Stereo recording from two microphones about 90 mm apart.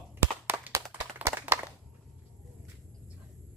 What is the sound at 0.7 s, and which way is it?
Clapping, 35° right (ahead or behind).